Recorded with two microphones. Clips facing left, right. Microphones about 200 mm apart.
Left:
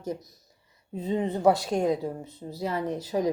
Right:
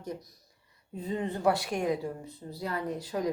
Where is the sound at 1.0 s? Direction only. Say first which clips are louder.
Left 5 dB; 20° left (ahead or behind).